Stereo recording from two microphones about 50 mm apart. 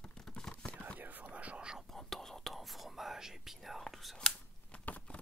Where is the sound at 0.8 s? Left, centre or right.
Right.